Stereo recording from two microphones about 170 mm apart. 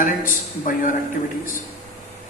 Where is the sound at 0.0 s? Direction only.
50° left (ahead or behind).